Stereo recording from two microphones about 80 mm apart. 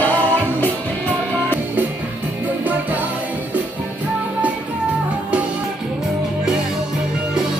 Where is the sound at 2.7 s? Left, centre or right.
Right.